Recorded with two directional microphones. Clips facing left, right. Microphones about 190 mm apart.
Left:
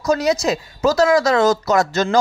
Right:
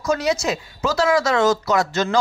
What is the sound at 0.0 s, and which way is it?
Speech, 40° left (ahead or behind).